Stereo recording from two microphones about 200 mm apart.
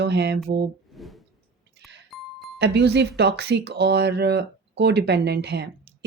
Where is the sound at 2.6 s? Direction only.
60° right (ahead or behind).